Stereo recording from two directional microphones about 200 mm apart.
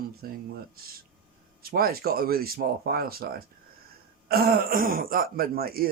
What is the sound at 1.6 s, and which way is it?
Speech, 50° right (ahead or behind).